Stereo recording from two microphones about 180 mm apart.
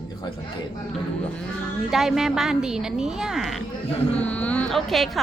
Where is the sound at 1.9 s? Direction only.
Centre (ahead or behind).